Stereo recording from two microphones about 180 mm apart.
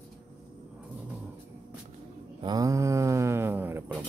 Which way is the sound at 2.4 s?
20° right (ahead or behind).